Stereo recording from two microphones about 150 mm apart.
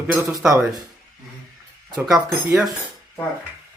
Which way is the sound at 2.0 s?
5° right (ahead or behind).